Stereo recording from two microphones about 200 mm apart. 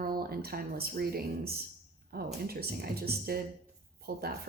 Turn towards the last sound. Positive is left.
turn(degrees=-50)  # may be behind; listen again after turning